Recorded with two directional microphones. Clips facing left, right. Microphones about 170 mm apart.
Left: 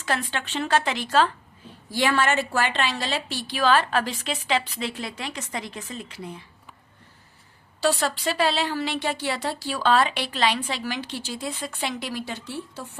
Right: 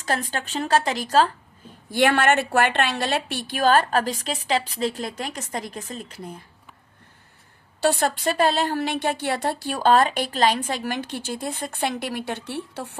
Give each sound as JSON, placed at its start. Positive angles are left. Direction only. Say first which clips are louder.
{"t": 0.0, "sound": "speech", "louder": "right 1 dB", "side_deg": -40}
{"t": 1.9, "sound": "a woman's voice", "louder": "right 4 dB", "side_deg": -60}
{"t": 7.8, "sound": "a woman's voice", "louder": "right 2 dB", "side_deg": -50}